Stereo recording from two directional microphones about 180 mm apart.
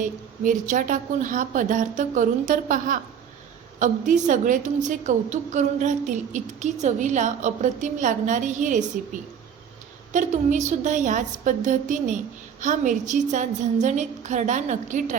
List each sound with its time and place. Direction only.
0.0 s a woman's voice: 45° right (ahead or behind)